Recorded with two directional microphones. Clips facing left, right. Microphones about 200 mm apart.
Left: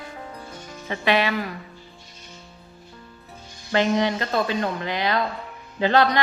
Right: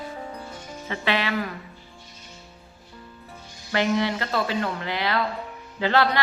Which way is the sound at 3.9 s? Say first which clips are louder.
Left 2 dB; 20° left (ahead or behind).